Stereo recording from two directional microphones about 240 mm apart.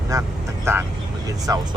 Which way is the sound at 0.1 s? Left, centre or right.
Centre.